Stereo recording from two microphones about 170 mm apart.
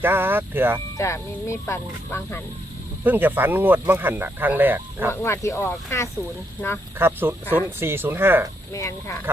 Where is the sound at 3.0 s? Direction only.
10° right (ahead or behind).